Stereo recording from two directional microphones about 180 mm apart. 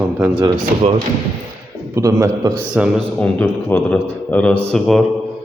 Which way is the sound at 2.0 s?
15° right (ahead or behind).